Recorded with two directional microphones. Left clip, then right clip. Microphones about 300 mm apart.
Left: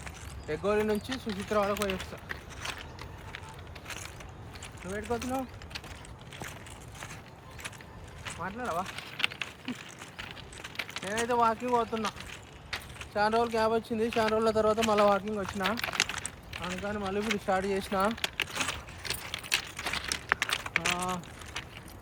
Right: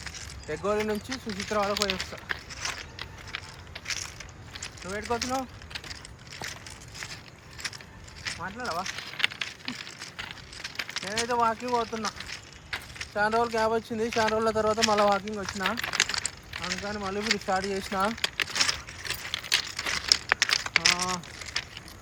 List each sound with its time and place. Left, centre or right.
0.4 s speech: centre
1.5 s walk: centre
4.9 s speech: centre
8.2 s a sound: centre
12.7 s speech: centre
18.2 s a sound: centre